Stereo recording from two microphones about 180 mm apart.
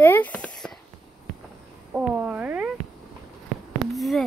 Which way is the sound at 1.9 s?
10° right (ahead or behind).